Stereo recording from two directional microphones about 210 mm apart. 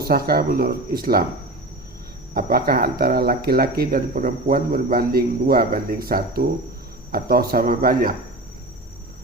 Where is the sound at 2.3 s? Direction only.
45° right (ahead or behind).